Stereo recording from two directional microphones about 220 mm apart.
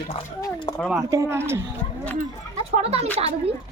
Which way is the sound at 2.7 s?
25° right (ahead or behind).